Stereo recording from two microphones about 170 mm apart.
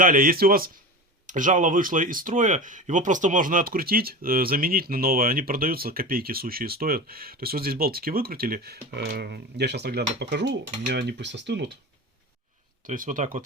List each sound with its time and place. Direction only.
0.0 s speech: 55° right (ahead or behind); by 11.8 s 90° right
12.8 s speech: 50° right (ahead or behind)